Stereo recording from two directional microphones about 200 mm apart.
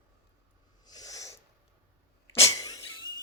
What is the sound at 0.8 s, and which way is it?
Owl, 20° left (ahead or behind).